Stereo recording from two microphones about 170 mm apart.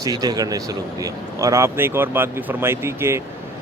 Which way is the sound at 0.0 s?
20° right (ahead or behind).